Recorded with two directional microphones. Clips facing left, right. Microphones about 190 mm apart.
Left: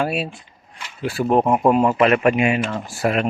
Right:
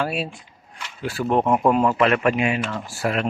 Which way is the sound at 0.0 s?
10° left (ahead or behind).